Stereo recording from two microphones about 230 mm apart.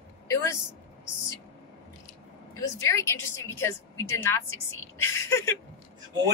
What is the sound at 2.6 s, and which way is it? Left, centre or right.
A woman's voice, centre.